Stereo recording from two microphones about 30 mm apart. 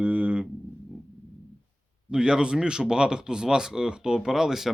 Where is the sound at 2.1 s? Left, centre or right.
Right.